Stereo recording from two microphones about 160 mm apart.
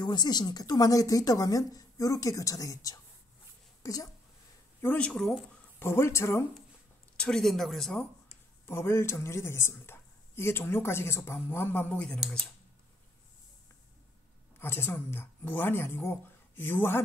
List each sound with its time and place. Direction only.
0.0 s a woman's voice: 25° left (ahead or behind)
4.8 s speech: 5° left (ahead or behind)
5.8 s speech: 15° left (ahead or behind)
7.2 s speech: 5° left (ahead or behind)
8.6 s speech: 15° left (ahead or behind)
14.6 s speech: 15° left (ahead or behind)